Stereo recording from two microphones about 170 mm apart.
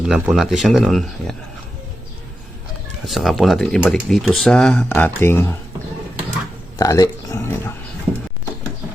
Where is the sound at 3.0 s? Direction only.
Centre (ahead or behind).